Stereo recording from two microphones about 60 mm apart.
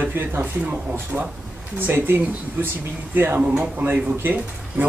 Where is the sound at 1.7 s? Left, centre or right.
Right.